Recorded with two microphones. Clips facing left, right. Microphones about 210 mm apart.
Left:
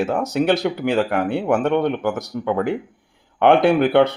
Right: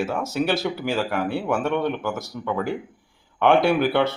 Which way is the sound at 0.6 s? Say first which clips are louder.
Left 5 dB; 55° left (ahead or behind).